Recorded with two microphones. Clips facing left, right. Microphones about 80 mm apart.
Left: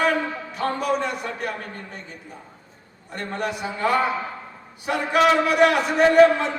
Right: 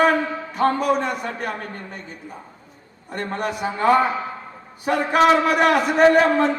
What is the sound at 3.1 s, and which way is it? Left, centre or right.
A man's voice, right.